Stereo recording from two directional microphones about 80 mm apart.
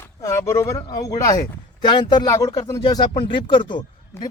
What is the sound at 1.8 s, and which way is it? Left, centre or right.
Speech, left.